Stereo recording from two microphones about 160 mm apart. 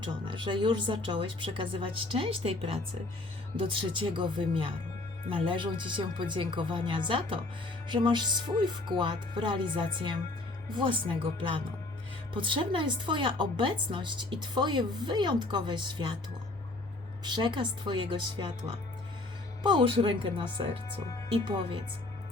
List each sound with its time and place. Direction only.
0.0 s a woman's voice: 30° right (ahead or behind)
17.2 s a woman's voice: 30° right (ahead or behind)
19.6 s speech: 30° right (ahead or behind)